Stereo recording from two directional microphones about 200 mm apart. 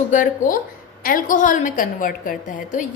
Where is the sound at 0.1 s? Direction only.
40° left (ahead or behind).